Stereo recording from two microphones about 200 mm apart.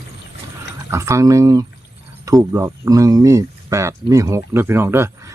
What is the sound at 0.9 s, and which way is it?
Speech, 15° right (ahead or behind).